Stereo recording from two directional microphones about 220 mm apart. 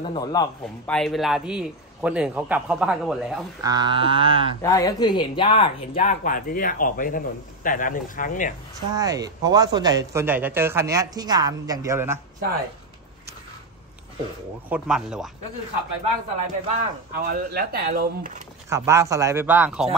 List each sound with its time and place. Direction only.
0.0 s a man's voice: 20° left (ahead or behind)
0.8 s a man's voice: centre (ahead or behind)
3.6 s a sound: 20° right (ahead or behind)
4.6 s speech: 15° left (ahead or behind)
5.9 s a man's voice: 35° left (ahead or behind)
8.9 s speech: 15° right (ahead or behind)
14.7 s a man's voice: 5° right (ahead or behind)
16.6 s speech: 40° right (ahead or behind)
18.7 s speech: 10° right (ahead or behind)